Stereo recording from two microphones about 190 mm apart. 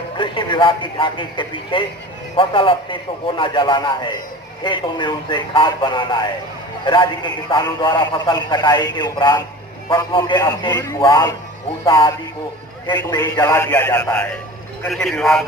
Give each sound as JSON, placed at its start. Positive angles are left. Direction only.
{"t": 0.2, "sound": "a man's voice", "side_deg": 25}
{"t": 12.8, "sound": "a man's voice", "side_deg": 20}